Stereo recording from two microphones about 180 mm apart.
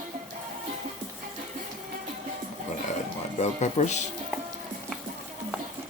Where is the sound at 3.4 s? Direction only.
40° left (ahead or behind).